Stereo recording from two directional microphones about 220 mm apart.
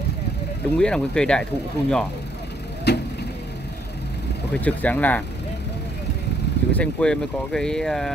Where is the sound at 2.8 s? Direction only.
50° left (ahead or behind).